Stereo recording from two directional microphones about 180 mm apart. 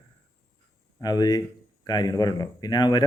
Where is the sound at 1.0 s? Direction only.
20° left (ahead or behind).